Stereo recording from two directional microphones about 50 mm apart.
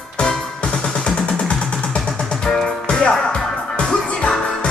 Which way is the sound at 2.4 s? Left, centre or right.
Centre.